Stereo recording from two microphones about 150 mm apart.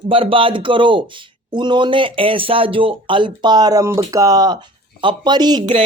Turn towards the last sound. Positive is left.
turn(degrees=-35)  # may be behind; listen again after turning